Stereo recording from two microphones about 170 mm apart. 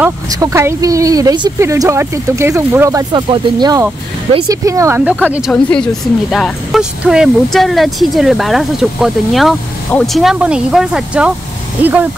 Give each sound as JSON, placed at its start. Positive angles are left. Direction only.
{"t": 0.3, "sound": "a woman's voice", "side_deg": -20}
{"t": 5.5, "sound": "a woman's voice", "side_deg": 5}